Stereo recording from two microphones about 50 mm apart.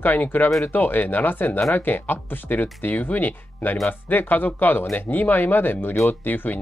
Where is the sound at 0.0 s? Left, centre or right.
Left.